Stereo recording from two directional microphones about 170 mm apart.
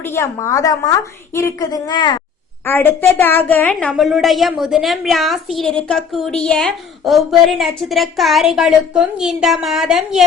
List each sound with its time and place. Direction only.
0.0 s a woman's voice: 15° left (ahead or behind)
2.6 s a woman's voice: 10° left (ahead or behind); by 10.2 s 5° right (ahead or behind)